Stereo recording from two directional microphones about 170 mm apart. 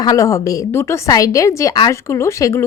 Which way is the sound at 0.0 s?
20° left (ahead or behind).